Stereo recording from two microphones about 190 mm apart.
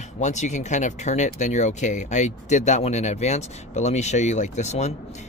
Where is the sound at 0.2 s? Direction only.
40° left (ahead or behind).